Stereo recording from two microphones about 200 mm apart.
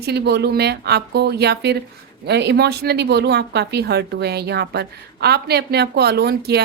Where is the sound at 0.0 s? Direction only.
55° right (ahead or behind).